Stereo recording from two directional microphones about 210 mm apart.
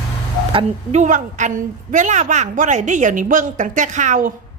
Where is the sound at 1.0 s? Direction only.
35° right (ahead or behind).